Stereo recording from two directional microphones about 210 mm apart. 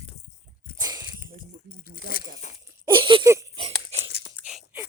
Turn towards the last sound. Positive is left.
turn(degrees=-5)  # may be behind; listen again after turning